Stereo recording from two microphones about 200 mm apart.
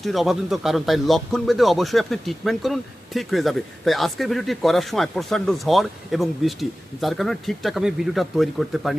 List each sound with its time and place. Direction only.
0.0 s speech: centre (ahead or behind)